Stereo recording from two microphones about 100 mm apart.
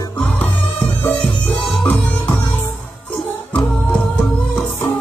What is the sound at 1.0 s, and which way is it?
Music, 20° left (ahead or behind).